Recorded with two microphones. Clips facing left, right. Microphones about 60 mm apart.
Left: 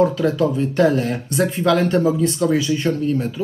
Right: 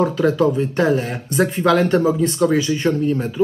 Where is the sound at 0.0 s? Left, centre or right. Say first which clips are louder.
Right 1 dB; right.